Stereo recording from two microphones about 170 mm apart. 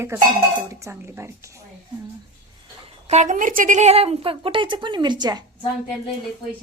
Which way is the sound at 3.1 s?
45° right (ahead or behind).